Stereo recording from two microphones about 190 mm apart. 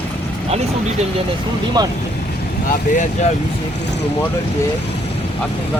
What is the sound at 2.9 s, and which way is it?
Speech, 40° left (ahead or behind).